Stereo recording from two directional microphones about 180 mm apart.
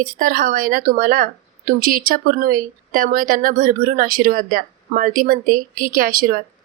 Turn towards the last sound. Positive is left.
turn(degrees=-55)  # may be behind; listen again after turning